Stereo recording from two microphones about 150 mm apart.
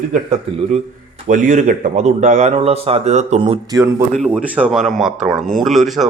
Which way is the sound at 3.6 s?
25° right (ahead or behind).